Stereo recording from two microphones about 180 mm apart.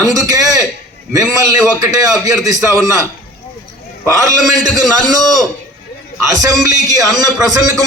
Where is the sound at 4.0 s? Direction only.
15° right (ahead or behind).